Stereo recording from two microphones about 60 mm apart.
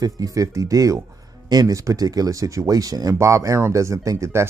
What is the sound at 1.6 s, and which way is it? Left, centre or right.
Speech, right.